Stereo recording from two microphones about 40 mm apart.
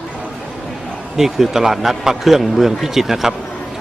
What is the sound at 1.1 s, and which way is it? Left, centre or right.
A man's voice, centre.